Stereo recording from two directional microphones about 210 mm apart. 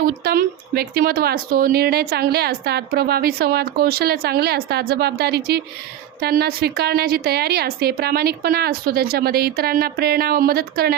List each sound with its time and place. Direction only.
0.0 s speech: 45° right (ahead or behind)